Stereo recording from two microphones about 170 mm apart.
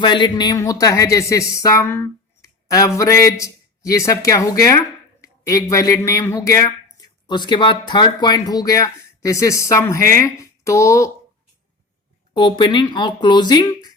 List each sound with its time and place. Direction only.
0.0 s speech: 25° left (ahead or behind)
12.3 s speech: 25° left (ahead or behind)